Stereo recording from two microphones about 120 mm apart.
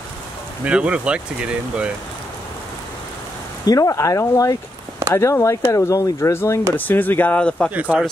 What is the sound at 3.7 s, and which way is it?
Speech, 30° left (ahead or behind).